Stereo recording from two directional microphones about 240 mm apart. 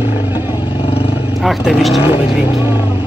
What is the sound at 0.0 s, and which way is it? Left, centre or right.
Vehicle, centre.